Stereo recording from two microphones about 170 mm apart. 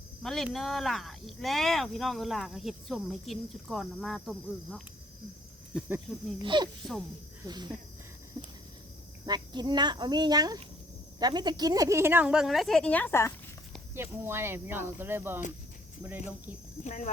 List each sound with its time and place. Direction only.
0.2 s speech: centre (ahead or behind)
6.4 s speech: 30° right (ahead or behind)
9.2 s speech: 25° right (ahead or behind); by 13.3 s 15° left (ahead or behind)
13.9 s speech: 15° right (ahead or behind)
16.8 s speech: 45° left (ahead or behind)